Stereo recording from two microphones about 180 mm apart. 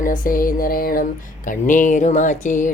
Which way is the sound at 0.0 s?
50° left (ahead or behind).